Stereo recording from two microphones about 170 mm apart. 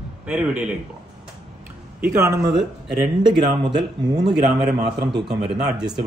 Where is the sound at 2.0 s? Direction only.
15° right (ahead or behind).